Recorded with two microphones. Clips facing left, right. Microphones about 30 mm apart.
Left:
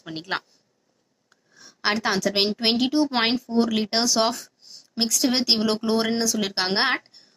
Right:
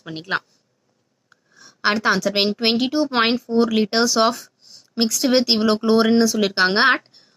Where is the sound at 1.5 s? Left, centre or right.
Centre.